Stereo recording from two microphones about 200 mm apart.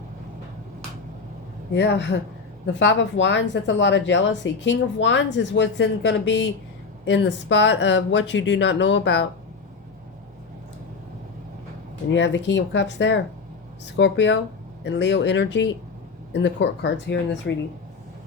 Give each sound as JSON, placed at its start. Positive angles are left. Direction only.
{"t": 1.7, "sound": "a woman's voice", "side_deg": 60}
{"t": 12.1, "sound": "a woman's voice", "side_deg": 65}